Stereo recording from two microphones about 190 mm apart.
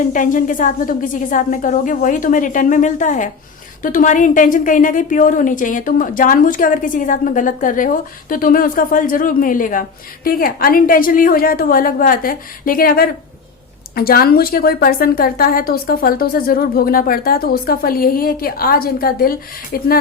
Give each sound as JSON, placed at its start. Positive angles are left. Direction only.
{"t": 0.1, "sound": "a woman's voice", "side_deg": 45}